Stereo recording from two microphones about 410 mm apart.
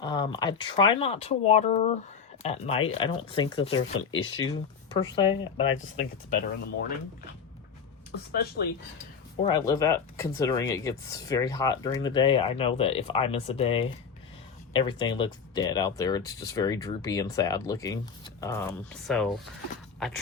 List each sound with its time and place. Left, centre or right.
0.0 s speech: centre
8.3 s speech: left
9.4 s speech: centre